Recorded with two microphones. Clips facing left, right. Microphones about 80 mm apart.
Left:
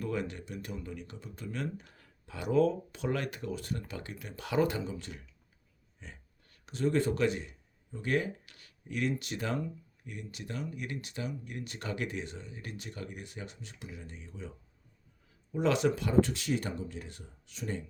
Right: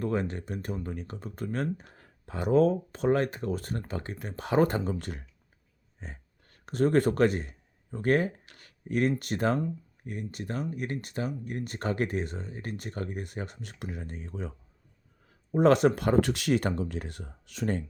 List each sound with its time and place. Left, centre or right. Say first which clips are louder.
0.0 s speech: right 5 dB; right